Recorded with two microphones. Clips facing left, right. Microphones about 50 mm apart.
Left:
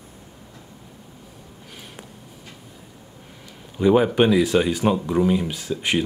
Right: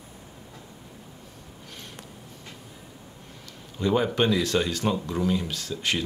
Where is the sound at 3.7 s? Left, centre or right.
Centre.